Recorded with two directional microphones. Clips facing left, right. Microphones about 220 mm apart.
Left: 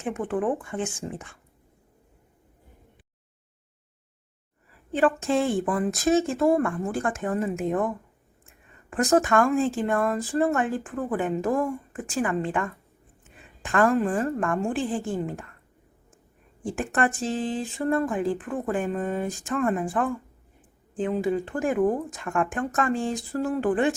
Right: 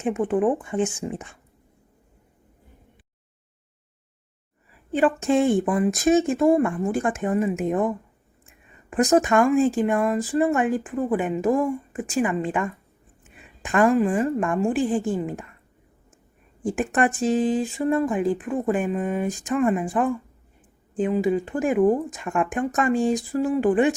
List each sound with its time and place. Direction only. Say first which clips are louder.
0.0 s speech: right 5 dB; 20° right (ahead or behind)
4.9 s speech: right 3 dB; 15° right (ahead or behind)
13.3 s a sound: right 2 dB; 15° right (ahead or behind)
13.9 s speech: right 3 dB; 5° right (ahead or behind)
16.7 s speech: right 3 dB; 15° right (ahead or behind)